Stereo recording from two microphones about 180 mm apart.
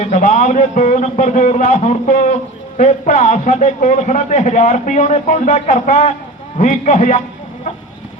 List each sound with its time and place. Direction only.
0.0 s a man's voice: 40° left (ahead or behind)